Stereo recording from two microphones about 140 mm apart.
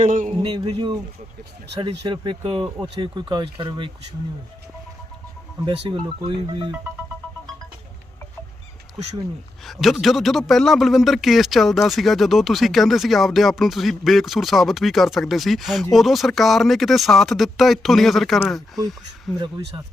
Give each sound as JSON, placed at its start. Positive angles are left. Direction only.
{"t": 0.0, "sound": "a man's voice", "side_deg": -70}
{"t": 0.6, "sound": "speech", "side_deg": -35}
{"t": 2.0, "sound": "speech", "side_deg": -35}
{"t": 5.6, "sound": "speech", "side_deg": -35}
{"t": 9.6, "sound": "a man's voice", "side_deg": 0}
{"t": 19.4, "sound": "speech", "side_deg": -35}